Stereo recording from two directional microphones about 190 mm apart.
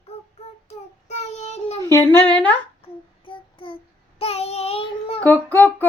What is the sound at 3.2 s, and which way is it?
Child singing, 25° left (ahead or behind).